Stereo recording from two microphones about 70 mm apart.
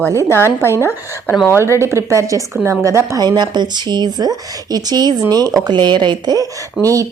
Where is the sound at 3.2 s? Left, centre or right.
Right.